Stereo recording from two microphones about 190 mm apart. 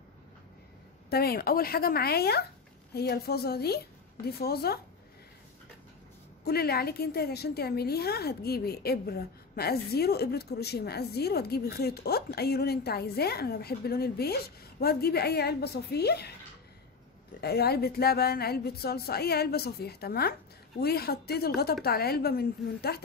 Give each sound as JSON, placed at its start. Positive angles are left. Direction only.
{"t": 1.1, "sound": "a woman's voice", "side_deg": 55}
{"t": 6.4, "sound": "a woman's voice", "side_deg": 55}
{"t": 17.4, "sound": "a woman's voice", "side_deg": 55}